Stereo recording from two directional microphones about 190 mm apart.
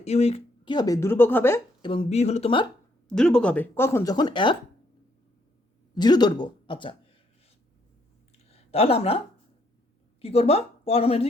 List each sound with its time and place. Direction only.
0.0 s speech: 35° left (ahead or behind); by 1.6 s 10° left (ahead or behind)
1.8 s speech: 25° left (ahead or behind)
3.1 s speech: 5° left (ahead or behind); by 4.5 s 25° left (ahead or behind)
5.9 s speech: 20° left (ahead or behind)
8.4 s a woman's voice: 30° left (ahead or behind)